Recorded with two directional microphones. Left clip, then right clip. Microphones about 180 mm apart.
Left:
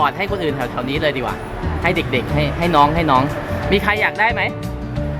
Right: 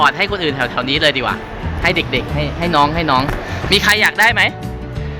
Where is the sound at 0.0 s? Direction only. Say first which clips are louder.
Right 4 dB; 10° left (ahead or behind).